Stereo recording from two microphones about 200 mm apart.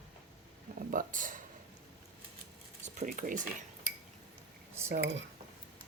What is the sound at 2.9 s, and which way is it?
Cutlery, 40° right (ahead or behind).